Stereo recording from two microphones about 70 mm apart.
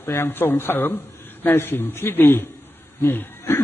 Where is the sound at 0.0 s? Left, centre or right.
Left.